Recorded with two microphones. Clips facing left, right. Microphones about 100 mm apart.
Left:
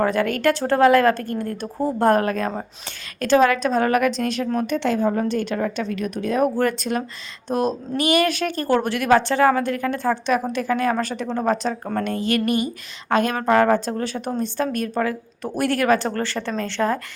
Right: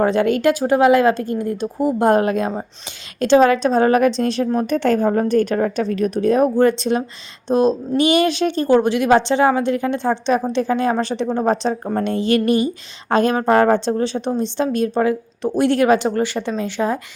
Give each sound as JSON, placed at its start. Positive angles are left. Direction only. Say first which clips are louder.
{"t": 0.0, "sound": "a woman's voice", "louder": "right 4 dB", "side_deg": -20}
{"t": 6.6, "sound": "speech", "louder": "right 6 dB", "side_deg": -25}